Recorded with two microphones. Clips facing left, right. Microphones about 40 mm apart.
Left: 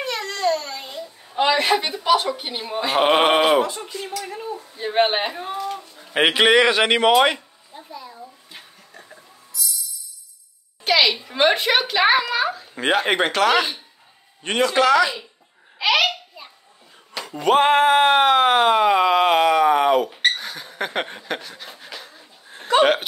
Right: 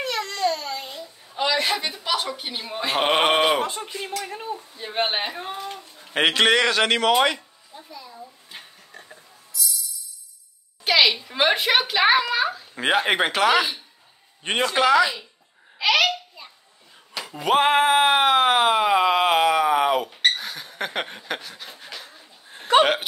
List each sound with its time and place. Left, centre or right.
0.0 s babbling: centre
0.7 s a sound: centre
1.4 s a woman's voice: left; by 3.6 s centre
3.6 s speech: right
4.7 s speech: centre
5.3 s a child's voice: centre
5.9 s a man's voice: centre
9.5 s music: centre
10.8 s a child's voice: centre
14.4 s a man's voice: centre
15.8 s a child's voice: centre
16.4 s a sound: centre